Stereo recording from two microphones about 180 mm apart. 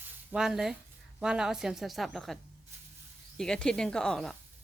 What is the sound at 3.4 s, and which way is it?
Speech, 5° left (ahead or behind).